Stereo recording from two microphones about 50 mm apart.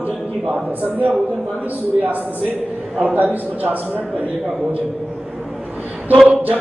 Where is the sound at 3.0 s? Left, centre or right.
Right.